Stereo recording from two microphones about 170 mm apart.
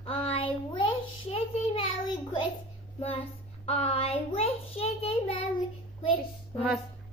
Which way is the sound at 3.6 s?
35° left (ahead or behind).